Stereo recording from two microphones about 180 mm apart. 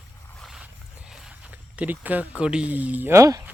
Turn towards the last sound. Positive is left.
turn(degrees=-15)  # may be behind; listen again after turning